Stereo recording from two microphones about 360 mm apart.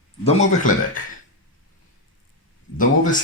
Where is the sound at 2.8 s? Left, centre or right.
Left.